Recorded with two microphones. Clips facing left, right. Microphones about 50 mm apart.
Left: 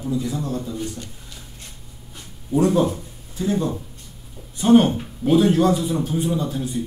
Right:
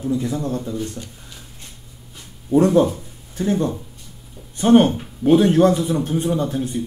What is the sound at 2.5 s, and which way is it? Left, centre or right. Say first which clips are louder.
Speech: right 3 dB; right.